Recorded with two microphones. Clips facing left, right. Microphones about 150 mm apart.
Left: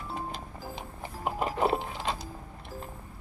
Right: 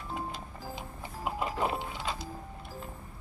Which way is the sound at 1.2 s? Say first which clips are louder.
Left 3 dB; 35° left (ahead or behind).